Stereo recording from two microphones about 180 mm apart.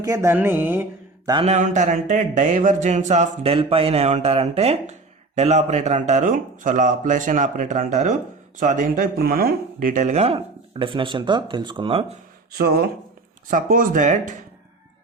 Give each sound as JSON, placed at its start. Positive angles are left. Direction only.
{"t": 0.0, "sound": "speech", "side_deg": -15}
{"t": 1.5, "sound": "speech", "side_deg": -40}
{"t": 12.5, "sound": "speech", "side_deg": -60}